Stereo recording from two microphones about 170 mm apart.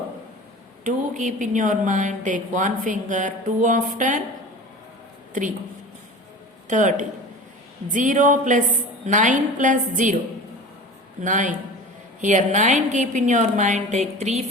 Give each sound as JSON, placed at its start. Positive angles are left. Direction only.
{"t": 0.9, "sound": "a woman's voice", "side_deg": -50}
{"t": 5.3, "sound": "speech", "side_deg": -50}
{"t": 6.7, "sound": "a woman's voice", "side_deg": -50}
{"t": 11.2, "sound": "a woman's voice", "side_deg": -50}